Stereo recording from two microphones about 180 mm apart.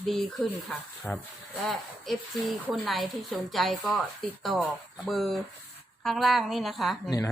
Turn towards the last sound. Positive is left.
turn(degrees=20)  # may be behind; listen again after turning